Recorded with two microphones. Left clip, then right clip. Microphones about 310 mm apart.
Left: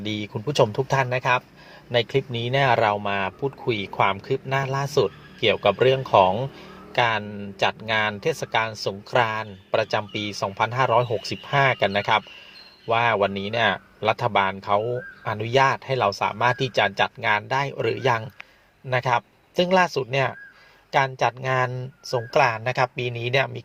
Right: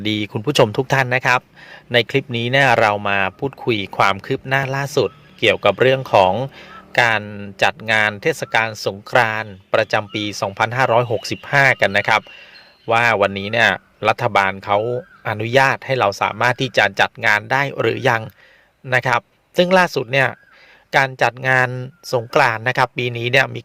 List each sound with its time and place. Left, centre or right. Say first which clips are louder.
0.0 s speech: right 8 dB; right